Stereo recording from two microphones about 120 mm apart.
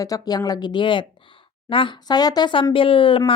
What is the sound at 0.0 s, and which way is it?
A woman's voice, 30° left (ahead or behind).